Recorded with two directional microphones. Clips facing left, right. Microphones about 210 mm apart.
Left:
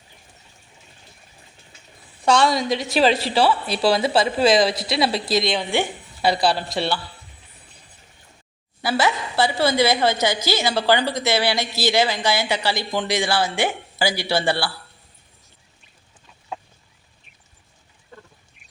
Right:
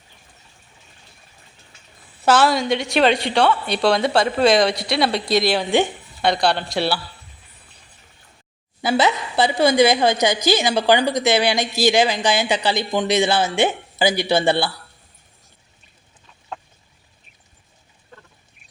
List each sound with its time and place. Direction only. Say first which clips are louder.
2.2 s a woman's voice: right 2 dB; 5° right (ahead or behind)
8.8 s a woman's voice: right 3 dB; 20° right (ahead or behind)
16.5 s chicken: left 1 dB; 5° left (ahead or behind)